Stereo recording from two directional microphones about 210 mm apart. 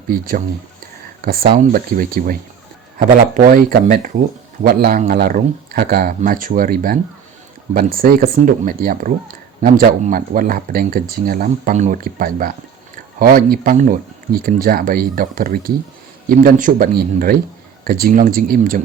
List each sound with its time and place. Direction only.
0.1 s speech: 40° right (ahead or behind)